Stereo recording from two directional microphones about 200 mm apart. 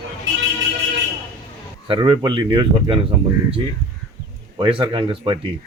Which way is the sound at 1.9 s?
25° right (ahead or behind).